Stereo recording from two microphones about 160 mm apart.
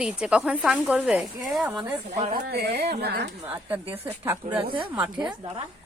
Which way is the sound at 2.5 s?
85° right.